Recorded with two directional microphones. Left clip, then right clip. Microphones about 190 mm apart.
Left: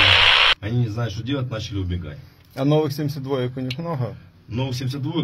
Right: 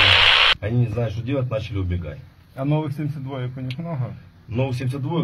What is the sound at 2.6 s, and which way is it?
Speech, 55° left (ahead or behind).